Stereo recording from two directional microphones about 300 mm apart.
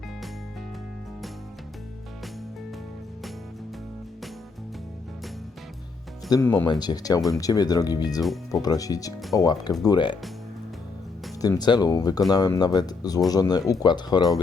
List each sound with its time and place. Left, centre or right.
6.3 s speech: centre
11.4 s speech: centre